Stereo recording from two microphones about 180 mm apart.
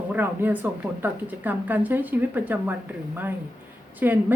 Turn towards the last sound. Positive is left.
turn(degrees=-10)  # may be behind; listen again after turning